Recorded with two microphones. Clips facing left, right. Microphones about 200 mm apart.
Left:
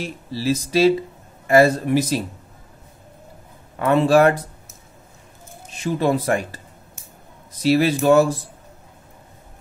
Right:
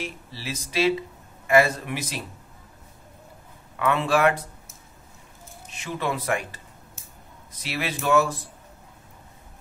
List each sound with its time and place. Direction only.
0.0 s speech: 40° left (ahead or behind)
3.7 s speech: 35° left (ahead or behind)
5.8 s speech: 35° left (ahead or behind)
7.6 s speech: 35° left (ahead or behind)